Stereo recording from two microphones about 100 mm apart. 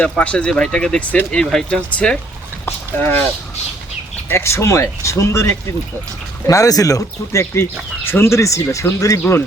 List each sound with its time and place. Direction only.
0.0 s speech: 10° left (ahead or behind)
2.6 s speech: 20° left (ahead or behind)
4.3 s speech: 25° left (ahead or behind)